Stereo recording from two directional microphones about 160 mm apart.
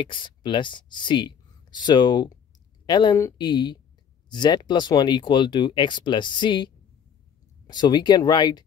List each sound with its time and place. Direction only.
0.0 s speech: 30° left (ahead or behind)